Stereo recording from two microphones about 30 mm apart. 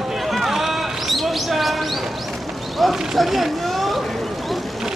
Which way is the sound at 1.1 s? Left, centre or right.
Centre.